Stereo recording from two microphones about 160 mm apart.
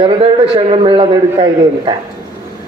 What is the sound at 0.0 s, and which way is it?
A man's voice, 35° right (ahead or behind).